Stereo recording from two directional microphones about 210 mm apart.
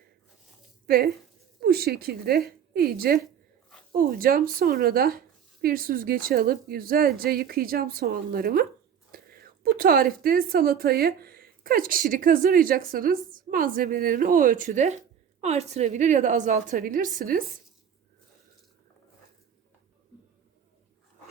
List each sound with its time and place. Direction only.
0.9 s a woman's voice: 45° right (ahead or behind)